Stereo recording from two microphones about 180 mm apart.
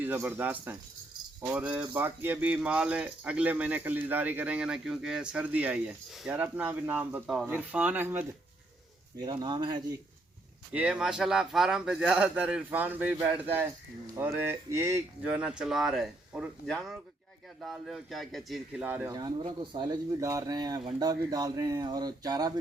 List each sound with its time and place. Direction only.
0.0 s speech: 10° right (ahead or behind)
9.1 s speech: 20° right (ahead or behind)
10.7 s speech: 5° right (ahead or behind)
19.1 s speech: 25° right (ahead or behind)